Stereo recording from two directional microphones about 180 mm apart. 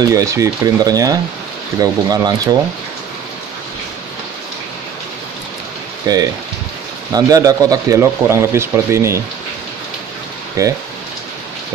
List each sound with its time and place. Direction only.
0.0 s speech: 20° right (ahead or behind)
6.0 s speech: 20° right (ahead or behind)
10.6 s speech: 20° right (ahead or behind)